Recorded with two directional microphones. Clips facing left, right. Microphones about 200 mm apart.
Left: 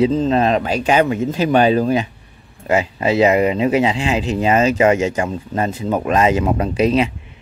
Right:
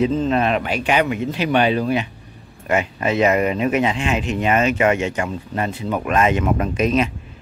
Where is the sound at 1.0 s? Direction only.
25° left (ahead or behind).